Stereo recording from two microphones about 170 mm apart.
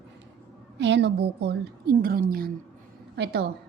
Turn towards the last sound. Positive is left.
turn(degrees=-80)